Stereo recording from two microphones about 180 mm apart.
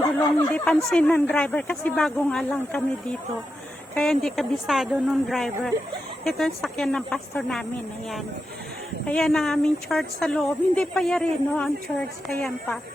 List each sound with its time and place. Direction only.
0.0 s a sound: 20° left (ahead or behind)
0.5 s speech: 5° left (ahead or behind)
3.9 s speech: 5° left (ahead or behind)
9.0 s speech: 5° left (ahead or behind)